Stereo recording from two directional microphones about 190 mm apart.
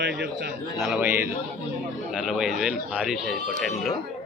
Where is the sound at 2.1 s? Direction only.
5° right (ahead or behind).